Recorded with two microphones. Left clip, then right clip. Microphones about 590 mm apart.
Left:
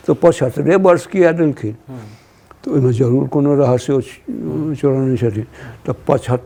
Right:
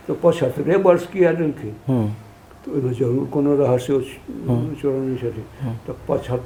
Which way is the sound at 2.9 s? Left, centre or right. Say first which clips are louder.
Left 5 dB; left.